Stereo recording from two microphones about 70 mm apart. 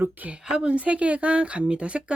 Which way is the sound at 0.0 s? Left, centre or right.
Right.